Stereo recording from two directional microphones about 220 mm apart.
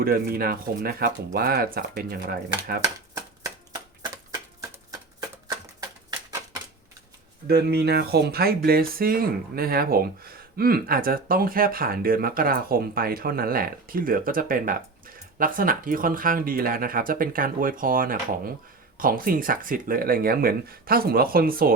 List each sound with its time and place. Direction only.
0.0 s speech: 45° right (ahead or behind)
2.8 s typewriter: 15° right (ahead or behind)
5.5 s typewriter: 15° right (ahead or behind)
7.4 s speech: 45° right (ahead or behind)